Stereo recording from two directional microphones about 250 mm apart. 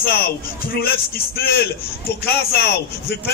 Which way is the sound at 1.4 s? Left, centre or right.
Left.